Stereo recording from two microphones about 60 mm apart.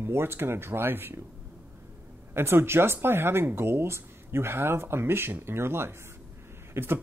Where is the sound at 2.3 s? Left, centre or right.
Right.